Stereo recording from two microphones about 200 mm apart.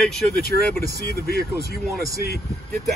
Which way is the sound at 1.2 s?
50° left (ahead or behind).